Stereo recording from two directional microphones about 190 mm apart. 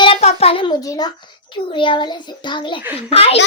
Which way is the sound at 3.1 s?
30° left (ahead or behind).